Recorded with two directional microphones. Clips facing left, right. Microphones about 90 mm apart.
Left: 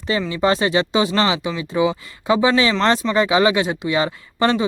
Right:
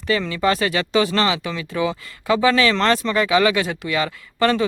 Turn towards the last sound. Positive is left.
turn(degrees=25)  # may be behind; listen again after turning